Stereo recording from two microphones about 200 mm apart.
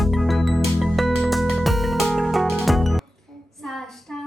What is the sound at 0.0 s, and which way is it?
Music, centre (ahead or behind).